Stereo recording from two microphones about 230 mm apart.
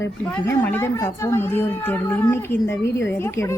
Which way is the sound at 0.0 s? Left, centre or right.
Centre.